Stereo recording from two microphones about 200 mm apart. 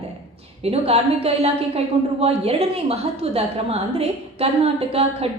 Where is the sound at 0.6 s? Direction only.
30° right (ahead or behind).